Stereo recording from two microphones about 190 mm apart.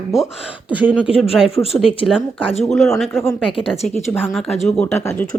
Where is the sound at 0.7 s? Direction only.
10° right (ahead or behind).